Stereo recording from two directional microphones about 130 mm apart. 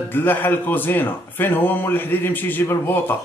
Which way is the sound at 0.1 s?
15° left (ahead or behind).